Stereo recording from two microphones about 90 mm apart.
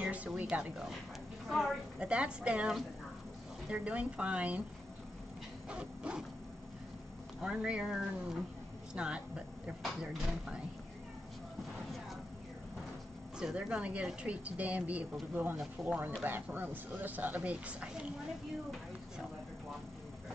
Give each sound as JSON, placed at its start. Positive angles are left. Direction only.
{"t": 0.0, "sound": "a woman's voice", "side_deg": -15}
{"t": 2.0, "sound": "speech", "side_deg": -10}
{"t": 3.7, "sound": "speech", "side_deg": -15}
{"t": 5.7, "sound": "speech", "side_deg": -10}
{"t": 7.4, "sound": "speech", "side_deg": -10}
{"t": 13.4, "sound": "speech", "side_deg": -10}